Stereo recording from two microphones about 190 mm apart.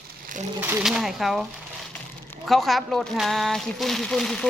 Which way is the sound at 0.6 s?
10° right (ahead or behind).